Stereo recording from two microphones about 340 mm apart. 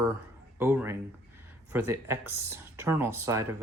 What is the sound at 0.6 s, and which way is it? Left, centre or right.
Speech, centre.